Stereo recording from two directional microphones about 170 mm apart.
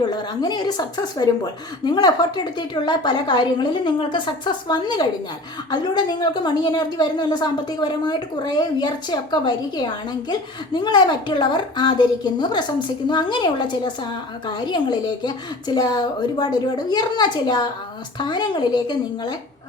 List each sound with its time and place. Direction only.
0.0 s a woman's voice: 25° left (ahead or behind)